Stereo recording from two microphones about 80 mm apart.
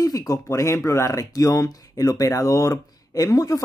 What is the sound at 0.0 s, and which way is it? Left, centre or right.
Speech, left.